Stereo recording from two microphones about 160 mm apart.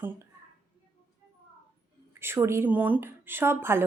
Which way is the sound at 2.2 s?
15° right (ahead or behind).